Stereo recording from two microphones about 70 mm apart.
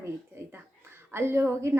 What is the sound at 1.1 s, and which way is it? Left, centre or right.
Speech, right.